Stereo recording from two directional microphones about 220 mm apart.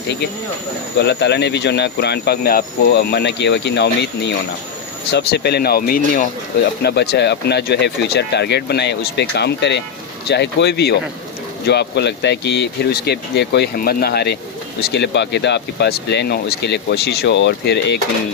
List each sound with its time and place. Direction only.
0.9 s speech: 50° left (ahead or behind)